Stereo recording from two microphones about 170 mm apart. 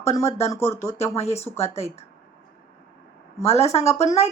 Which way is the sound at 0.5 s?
15° left (ahead or behind).